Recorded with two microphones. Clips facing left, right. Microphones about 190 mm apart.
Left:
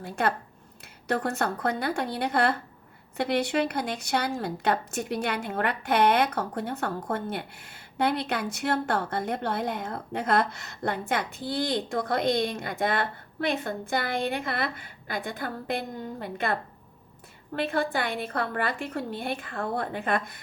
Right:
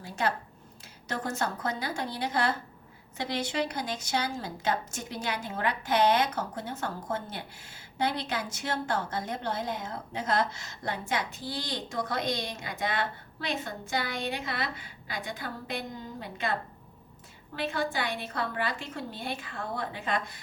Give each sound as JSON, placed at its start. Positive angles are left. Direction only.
{"t": 0.0, "sound": "a woman's voice", "side_deg": 55}